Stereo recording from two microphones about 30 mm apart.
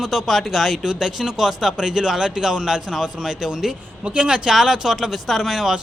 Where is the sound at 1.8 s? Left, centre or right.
Right.